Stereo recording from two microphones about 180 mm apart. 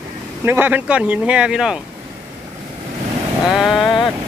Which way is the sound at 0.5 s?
10° right (ahead or behind).